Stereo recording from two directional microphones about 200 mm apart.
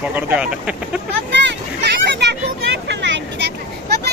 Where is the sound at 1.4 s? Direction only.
60° right (ahead or behind).